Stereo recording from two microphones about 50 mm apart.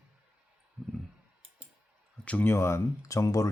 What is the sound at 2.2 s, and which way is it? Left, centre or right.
Speech, left.